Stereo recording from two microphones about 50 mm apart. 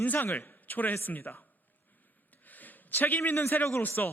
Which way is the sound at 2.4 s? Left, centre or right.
Left.